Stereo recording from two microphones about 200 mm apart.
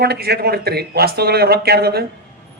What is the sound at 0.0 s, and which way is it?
A man's voice, 50° right (ahead or behind).